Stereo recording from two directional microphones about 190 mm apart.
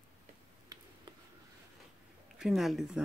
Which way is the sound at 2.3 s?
Centre (ahead or behind).